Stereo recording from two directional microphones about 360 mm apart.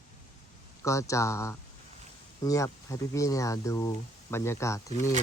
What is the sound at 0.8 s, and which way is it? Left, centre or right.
Speech, centre.